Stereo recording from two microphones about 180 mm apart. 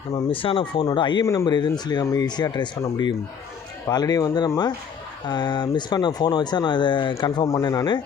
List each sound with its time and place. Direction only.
0.1 s speech: 30° left (ahead or behind)